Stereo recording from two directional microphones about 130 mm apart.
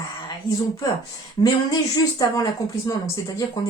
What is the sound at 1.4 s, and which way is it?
A woman's voice, 30° left (ahead or behind).